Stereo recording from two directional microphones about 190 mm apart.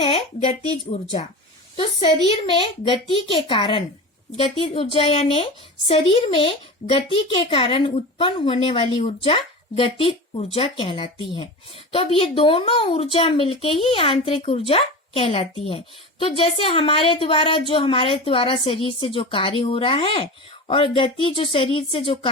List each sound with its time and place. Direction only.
0.0 s speech: 25° left (ahead or behind)
1.7 s a woman's voice: 30° left (ahead or behind)